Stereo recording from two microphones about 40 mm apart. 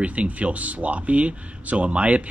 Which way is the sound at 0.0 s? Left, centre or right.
Right.